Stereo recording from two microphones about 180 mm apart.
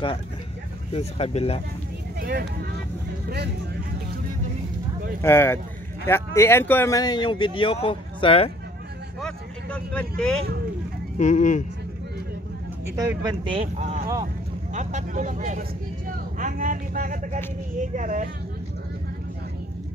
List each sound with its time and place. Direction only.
0.9 s speech: 35° left (ahead or behind)
2.1 s speech: 60° right (ahead or behind)
5.2 s speech: 15° left (ahead or behind); by 8.5 s 30° left (ahead or behind)
9.2 s speech: 5° left (ahead or behind)
11.1 s speech: 45° left (ahead or behind)
12.9 s speech: 20° right (ahead or behind); by 18.3 s 45° right (ahead or behind)